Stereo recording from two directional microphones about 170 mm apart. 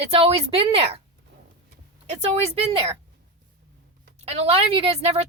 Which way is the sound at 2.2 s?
35° right (ahead or behind).